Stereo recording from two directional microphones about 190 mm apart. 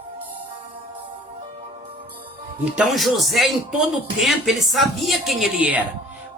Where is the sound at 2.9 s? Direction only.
Centre (ahead or behind).